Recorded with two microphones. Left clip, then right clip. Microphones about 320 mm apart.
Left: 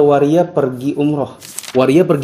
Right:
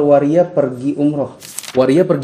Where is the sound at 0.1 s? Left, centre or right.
Left.